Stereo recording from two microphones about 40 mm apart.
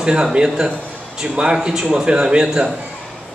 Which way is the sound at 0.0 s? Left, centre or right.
Right.